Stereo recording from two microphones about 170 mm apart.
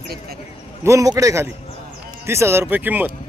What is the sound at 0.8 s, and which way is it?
Speech, 20° right (ahead or behind).